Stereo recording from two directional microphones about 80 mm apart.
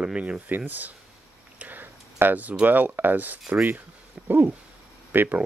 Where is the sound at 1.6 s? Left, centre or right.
Right.